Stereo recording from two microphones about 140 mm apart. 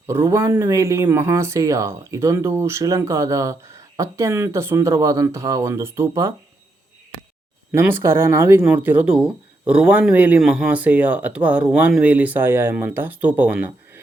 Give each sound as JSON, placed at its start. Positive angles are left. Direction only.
{"t": 0.1, "sound": "speech", "side_deg": -20}
{"t": 7.7, "sound": "speech", "side_deg": -15}